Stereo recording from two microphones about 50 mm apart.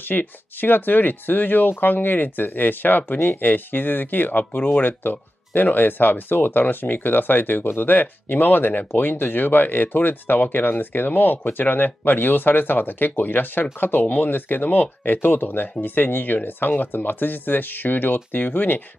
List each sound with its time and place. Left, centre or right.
0.0 s speech: left